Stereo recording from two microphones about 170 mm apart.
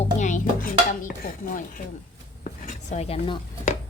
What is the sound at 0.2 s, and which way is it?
Dishes, 45° left (ahead or behind).